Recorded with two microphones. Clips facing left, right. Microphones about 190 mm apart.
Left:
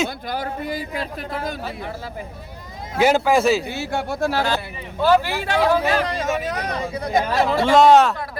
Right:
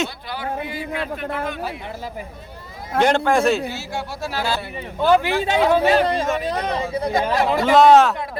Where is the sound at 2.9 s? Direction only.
5° left (ahead or behind).